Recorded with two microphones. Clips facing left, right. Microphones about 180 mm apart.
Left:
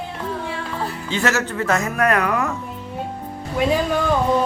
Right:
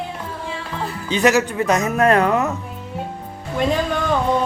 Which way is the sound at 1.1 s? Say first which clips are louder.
Right 6 dB; 15° right (ahead or behind).